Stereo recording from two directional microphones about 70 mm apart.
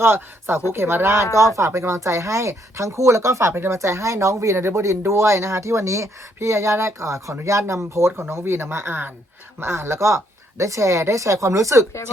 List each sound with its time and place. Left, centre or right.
0.0 s speech: right